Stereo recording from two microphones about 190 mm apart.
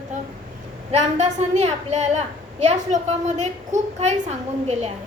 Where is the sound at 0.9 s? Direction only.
35° right (ahead or behind).